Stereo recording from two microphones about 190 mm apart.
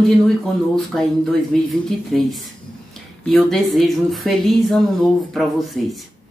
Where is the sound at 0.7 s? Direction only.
Centre (ahead or behind).